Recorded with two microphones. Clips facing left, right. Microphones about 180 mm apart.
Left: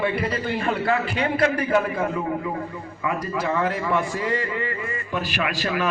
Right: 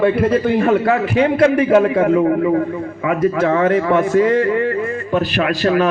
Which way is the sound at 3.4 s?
55° right (ahead or behind).